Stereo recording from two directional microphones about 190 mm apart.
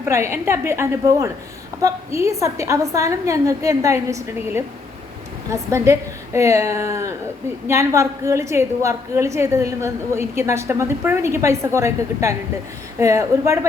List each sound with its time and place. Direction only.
0.0 s a woman's voice: 15° right (ahead or behind)